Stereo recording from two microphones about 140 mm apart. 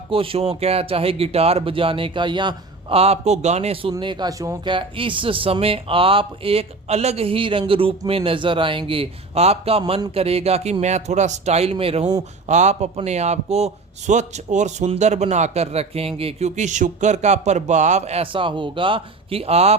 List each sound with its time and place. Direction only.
0.1 s speech: 40° right (ahead or behind)
3.0 s a man's voice: 50° right (ahead or behind)
3.9 s a man's voice: 30° right (ahead or behind)
12.5 s a man's voice: 55° right (ahead or behind)